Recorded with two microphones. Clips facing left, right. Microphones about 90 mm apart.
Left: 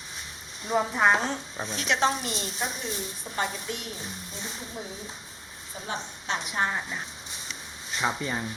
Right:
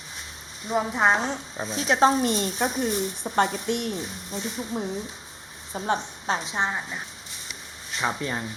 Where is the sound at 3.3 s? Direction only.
55° right (ahead or behind).